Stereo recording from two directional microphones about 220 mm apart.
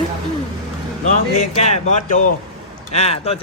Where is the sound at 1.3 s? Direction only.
35° left (ahead or behind).